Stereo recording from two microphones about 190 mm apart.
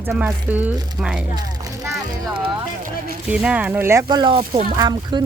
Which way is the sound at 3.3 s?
5° right (ahead or behind).